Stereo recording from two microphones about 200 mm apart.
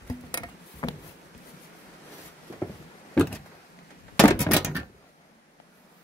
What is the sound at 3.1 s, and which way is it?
Vehicle, 5° left (ahead or behind).